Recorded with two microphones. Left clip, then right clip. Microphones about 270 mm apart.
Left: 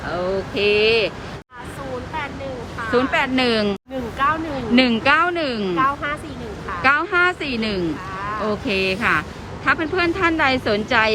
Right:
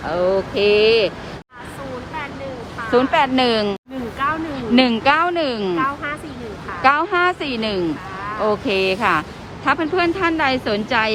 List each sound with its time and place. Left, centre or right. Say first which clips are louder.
0.5 s speech: right 1 dB; centre
2.8 s a woman's voice: right 3 dB; centre